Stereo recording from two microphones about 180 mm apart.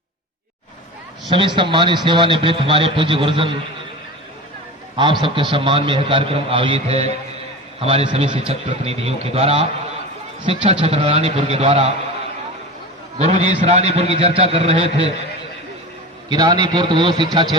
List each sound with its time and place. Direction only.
1.3 s a man's voice: 25° right (ahead or behind)
4.9 s a man's voice: 25° right (ahead or behind)
13.1 s a man's voice: 35° right (ahead or behind)
16.3 s a man's voice: 25° right (ahead or behind)